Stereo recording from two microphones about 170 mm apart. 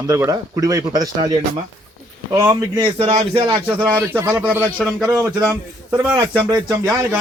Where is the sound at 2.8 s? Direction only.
35° right (ahead or behind).